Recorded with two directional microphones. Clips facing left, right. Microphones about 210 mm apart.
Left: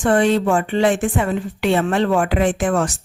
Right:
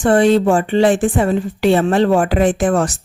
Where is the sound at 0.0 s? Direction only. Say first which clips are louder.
Right 4 dB; 35° right (ahead or behind).